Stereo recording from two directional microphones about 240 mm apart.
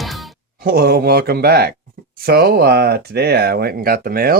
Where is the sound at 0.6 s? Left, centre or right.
Right.